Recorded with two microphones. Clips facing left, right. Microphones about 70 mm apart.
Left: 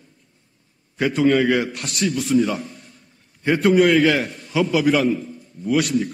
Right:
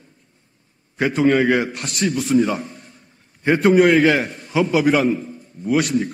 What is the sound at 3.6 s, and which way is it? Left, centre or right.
A man's voice, right.